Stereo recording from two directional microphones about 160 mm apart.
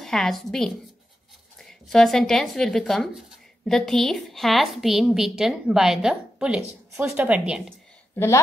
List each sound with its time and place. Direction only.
0.0 s a woman's voice: 5° left (ahead or behind)